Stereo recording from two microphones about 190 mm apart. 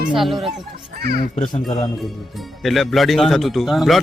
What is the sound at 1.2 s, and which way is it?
Speech, 35° left (ahead or behind).